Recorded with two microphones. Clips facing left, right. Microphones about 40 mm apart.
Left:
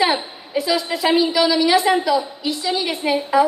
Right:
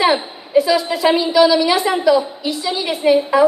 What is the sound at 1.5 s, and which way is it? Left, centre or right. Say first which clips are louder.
Speech: right 1 dB; centre.